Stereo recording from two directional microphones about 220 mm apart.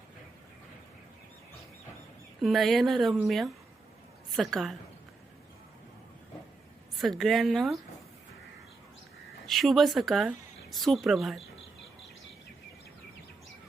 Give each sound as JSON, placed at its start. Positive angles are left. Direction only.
{"t": 2.4, "sound": "speech", "side_deg": 0}
{"t": 6.9, "sound": "speech", "side_deg": 0}
{"t": 9.5, "sound": "speech", "side_deg": 0}